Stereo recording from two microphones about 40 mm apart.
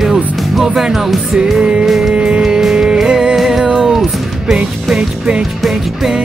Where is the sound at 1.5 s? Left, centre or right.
Centre.